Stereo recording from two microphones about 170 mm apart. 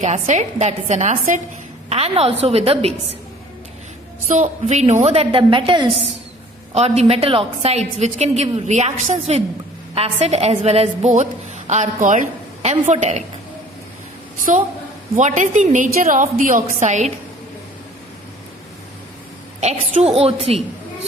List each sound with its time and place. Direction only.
0.0 s a woman's voice: 45° right (ahead or behind)
4.3 s a woman's voice: 45° right (ahead or behind); by 5.9 s 30° right (ahead or behind)
6.7 s a woman's voice: 40° right (ahead or behind)
14.5 s a woman's voice: 45° right (ahead or behind)
19.5 s a woman's voice: 40° right (ahead or behind)